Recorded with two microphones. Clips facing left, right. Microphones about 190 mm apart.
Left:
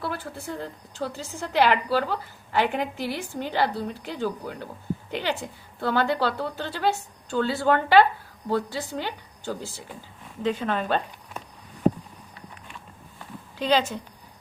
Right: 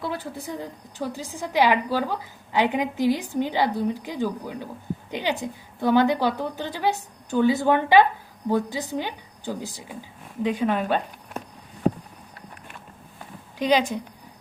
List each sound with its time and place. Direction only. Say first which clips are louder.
0.0 s a woman's voice: right 2 dB; 20° right (ahead or behind)
13.6 s a woman's voice: right 2 dB; 15° right (ahead or behind)